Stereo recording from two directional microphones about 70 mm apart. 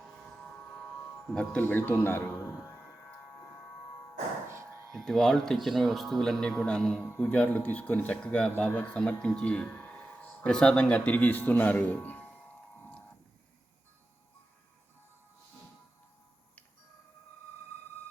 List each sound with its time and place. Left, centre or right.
1.3 s speech: centre
1.6 s speech: left
4.9 s speech: centre; by 12.4 s left